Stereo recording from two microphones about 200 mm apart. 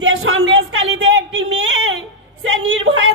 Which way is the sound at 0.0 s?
80° right.